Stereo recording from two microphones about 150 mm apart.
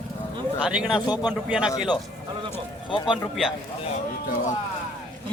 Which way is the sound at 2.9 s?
30° left (ahead or behind).